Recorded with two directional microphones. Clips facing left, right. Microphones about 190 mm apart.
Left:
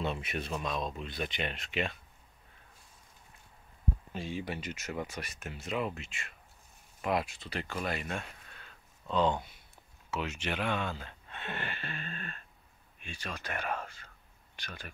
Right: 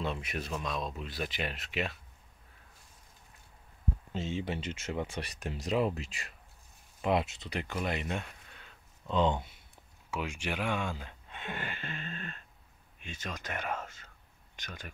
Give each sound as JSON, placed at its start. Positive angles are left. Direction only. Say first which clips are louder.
{"t": 0.0, "sound": "speech", "louder": "left 1 dB", "side_deg": 0}
{"t": 4.1, "sound": "speech", "louder": "right 5 dB", "side_deg": -25}
{"t": 7.0, "sound": "speech", "louder": "right 2 dB", "side_deg": -25}